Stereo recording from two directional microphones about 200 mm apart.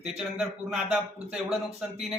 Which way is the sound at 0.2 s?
Centre (ahead or behind).